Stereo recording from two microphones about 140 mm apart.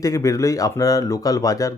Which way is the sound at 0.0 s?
25° left (ahead or behind).